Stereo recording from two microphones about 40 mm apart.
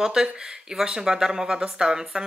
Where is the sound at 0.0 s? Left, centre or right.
Centre.